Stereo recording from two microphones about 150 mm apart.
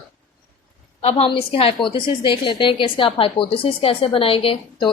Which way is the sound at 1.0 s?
45° left (ahead or behind).